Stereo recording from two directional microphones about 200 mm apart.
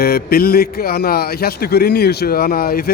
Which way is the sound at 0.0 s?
50° left (ahead or behind).